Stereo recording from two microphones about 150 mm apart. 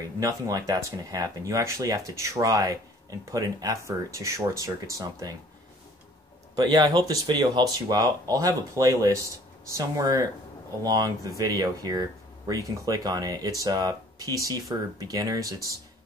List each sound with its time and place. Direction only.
0.2 s speech: 20° right (ahead or behind)
6.5 s speech: 25° right (ahead or behind)